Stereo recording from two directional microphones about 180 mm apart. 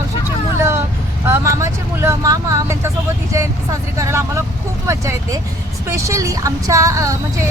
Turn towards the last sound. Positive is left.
turn(degrees=-20)  # may be behind; listen again after turning